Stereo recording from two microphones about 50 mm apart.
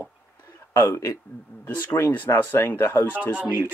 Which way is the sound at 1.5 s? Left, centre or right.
Left.